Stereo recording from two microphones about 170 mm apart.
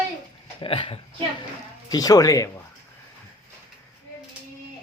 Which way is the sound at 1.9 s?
20° left (ahead or behind).